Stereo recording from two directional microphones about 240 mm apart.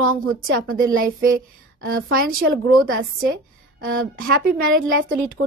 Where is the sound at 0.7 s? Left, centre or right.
Right.